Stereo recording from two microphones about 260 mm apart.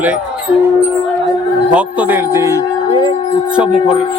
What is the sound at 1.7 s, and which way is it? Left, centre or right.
Speech, centre.